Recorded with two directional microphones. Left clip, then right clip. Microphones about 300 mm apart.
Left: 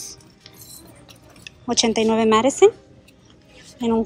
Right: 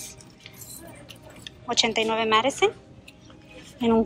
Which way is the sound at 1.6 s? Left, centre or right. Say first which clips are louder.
Left 4 dB; centre.